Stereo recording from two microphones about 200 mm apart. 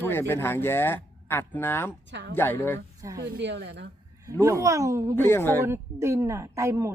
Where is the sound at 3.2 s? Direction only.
60° right (ahead or behind).